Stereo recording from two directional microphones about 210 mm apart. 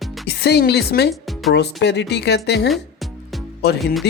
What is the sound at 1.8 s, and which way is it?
Speech, 55° left (ahead or behind).